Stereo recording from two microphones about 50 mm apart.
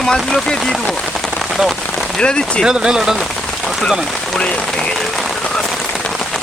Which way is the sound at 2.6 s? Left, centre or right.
Centre.